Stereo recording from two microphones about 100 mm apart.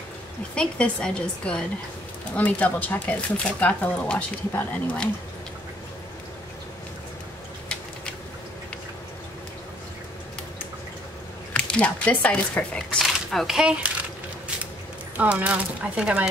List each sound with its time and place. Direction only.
0.6 s speech: 10° left (ahead or behind)
7.6 s a sound: 10° left (ahead or behind)
11.5 s speech: 10° left (ahead or behind); by 13.9 s 10° right (ahead or behind)
15.1 s speech: 15° right (ahead or behind)